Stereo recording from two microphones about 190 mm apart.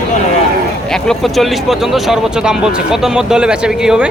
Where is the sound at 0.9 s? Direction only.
Centre (ahead or behind).